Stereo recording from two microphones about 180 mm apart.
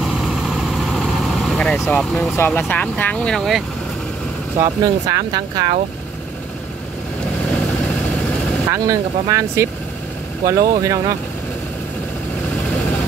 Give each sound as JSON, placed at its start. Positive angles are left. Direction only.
{"t": 0.0, "sound": "vehicle", "side_deg": 0}
{"t": 4.6, "sound": "speech", "side_deg": -20}
{"t": 8.7, "sound": "speech", "side_deg": -20}